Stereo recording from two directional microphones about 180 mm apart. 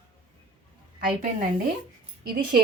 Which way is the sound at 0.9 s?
50° right (ahead or behind).